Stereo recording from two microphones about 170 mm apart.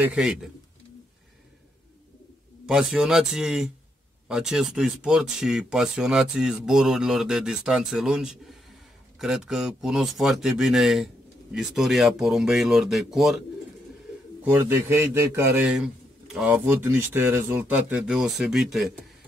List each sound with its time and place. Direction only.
0.0 s speech: 5° right (ahead or behind)
2.6 s speech: 5° right (ahead or behind)
14.4 s speech: 15° right (ahead or behind)